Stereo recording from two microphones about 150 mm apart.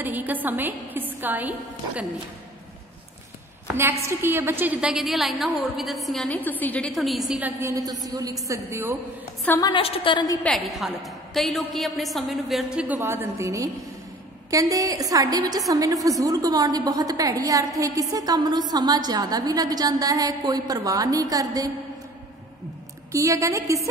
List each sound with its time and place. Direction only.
0.0 s a woman's voice: 10° right (ahead or behind)
4.0 s a woman's voice: 15° right (ahead or behind)
9.6 s a woman's voice: 35° left (ahead or behind)
10.4 s a woman's voice: centre (ahead or behind); by 21.6 s 25° right (ahead or behind)
23.1 s a woman's voice: 20° right (ahead or behind)